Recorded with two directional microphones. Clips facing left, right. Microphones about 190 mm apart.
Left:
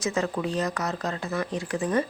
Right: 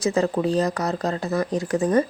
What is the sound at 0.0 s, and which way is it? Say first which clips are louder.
Speech: right 6 dB; 35° right (ahead or behind).